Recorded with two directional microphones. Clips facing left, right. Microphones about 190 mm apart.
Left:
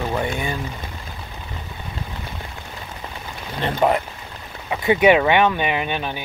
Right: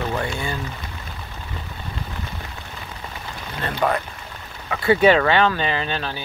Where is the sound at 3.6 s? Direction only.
20° left (ahead or behind).